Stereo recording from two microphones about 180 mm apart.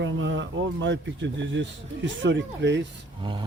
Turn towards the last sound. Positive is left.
turn(degrees=-30)  # may be behind; listen again after turning